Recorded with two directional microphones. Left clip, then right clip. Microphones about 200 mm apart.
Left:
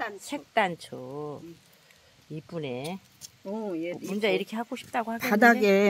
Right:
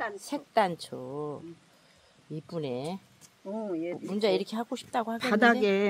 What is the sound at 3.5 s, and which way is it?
Speech, 45° left (ahead or behind).